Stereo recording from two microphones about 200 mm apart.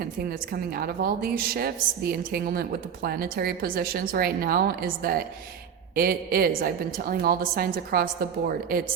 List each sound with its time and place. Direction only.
0.0 s a woman's voice: 50° right (ahead or behind)